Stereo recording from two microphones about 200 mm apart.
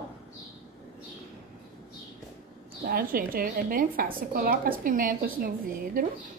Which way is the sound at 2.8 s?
45° right (ahead or behind).